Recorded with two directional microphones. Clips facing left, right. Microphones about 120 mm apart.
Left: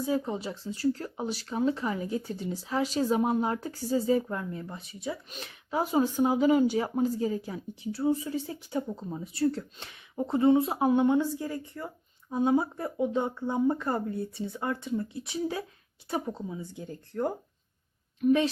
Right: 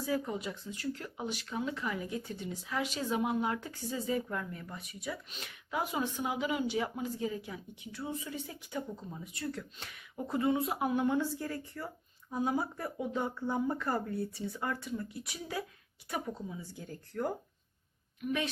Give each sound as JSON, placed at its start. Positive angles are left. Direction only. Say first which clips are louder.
{"t": 0.0, "sound": "a woman's voice", "louder": "left 5 dB", "side_deg": 25}